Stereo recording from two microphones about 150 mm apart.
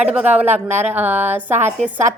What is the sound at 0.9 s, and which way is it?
Speech, 10° right (ahead or behind).